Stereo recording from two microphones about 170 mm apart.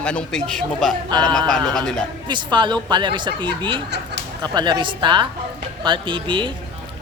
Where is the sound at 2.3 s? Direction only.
25° right (ahead or behind).